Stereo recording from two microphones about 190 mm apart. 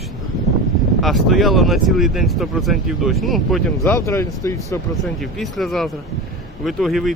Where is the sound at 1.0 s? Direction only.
Centre (ahead or behind).